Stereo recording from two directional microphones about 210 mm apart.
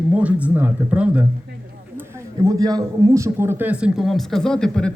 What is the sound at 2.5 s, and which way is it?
Speech, 15° right (ahead or behind).